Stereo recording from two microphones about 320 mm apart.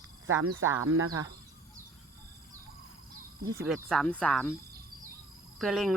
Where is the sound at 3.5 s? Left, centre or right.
Centre.